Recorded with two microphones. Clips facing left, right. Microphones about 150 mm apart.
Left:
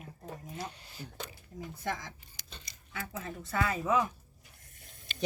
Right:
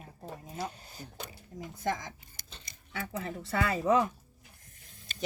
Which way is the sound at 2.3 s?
55° right (ahead or behind).